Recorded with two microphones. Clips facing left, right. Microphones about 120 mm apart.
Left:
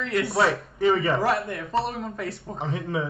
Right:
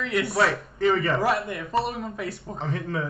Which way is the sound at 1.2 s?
Centre (ahead or behind).